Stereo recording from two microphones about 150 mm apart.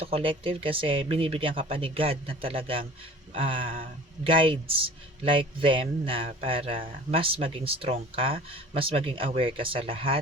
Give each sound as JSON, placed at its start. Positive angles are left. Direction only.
{"t": 0.0, "sound": "a man's voice", "side_deg": -40}